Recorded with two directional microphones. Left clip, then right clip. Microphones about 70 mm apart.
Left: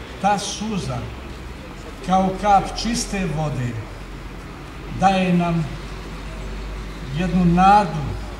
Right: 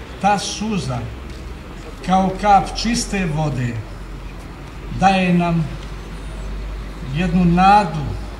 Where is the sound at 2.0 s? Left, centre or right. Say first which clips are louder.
Right 2 dB; centre.